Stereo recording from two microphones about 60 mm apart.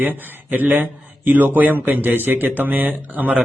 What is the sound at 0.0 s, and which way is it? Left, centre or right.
A man's voice, right.